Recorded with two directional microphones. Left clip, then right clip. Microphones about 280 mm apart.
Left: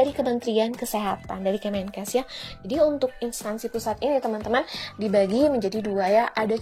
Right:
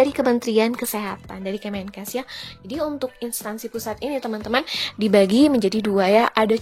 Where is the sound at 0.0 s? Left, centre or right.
Centre.